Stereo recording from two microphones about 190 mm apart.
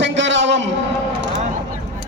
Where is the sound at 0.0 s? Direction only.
70° right (ahead or behind).